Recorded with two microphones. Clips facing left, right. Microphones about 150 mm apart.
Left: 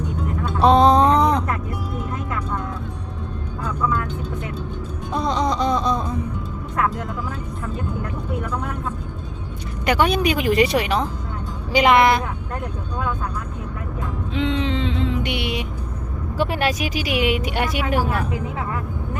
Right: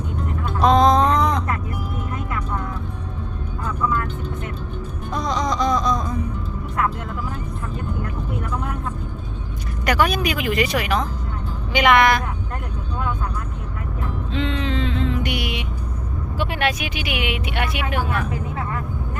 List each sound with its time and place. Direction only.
0.6 s a sound: 35° left (ahead or behind)
5.1 s music: 30° left (ahead or behind)
9.8 s speech: 25° left (ahead or behind)
14.3 s music: 15° left (ahead or behind)
16.4 s speech: 40° left (ahead or behind)